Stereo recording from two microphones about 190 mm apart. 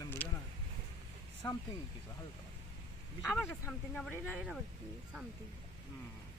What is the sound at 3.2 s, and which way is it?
Speech, centre (ahead or behind).